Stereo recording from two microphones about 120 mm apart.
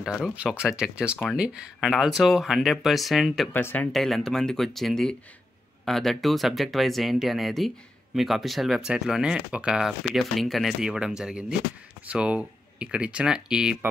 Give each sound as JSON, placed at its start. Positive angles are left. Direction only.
{"t": 0.0, "sound": "speech", "side_deg": -5}
{"t": 3.5, "sound": "speech", "side_deg": 15}
{"t": 3.9, "sound": "speech", "side_deg": 0}